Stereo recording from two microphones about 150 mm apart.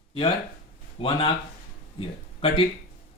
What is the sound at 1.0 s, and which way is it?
Speech, 35° left (ahead or behind).